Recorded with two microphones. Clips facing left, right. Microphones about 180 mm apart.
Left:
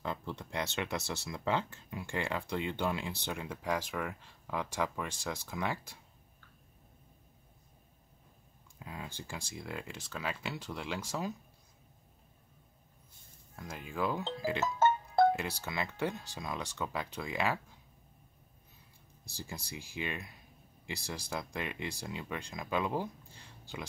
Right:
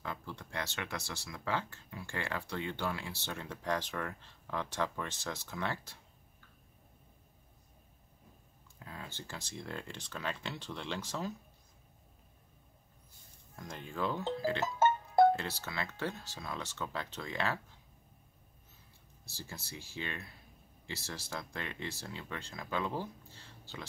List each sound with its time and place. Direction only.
0.0 s speech: 25° left (ahead or behind)
8.7 s speech: 10° left (ahead or behind)
13.6 s speech: 5° left (ahead or behind)
19.2 s speech: 15° left (ahead or behind)